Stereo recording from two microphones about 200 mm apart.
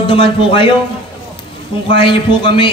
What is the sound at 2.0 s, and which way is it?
Speech, 25° left (ahead or behind).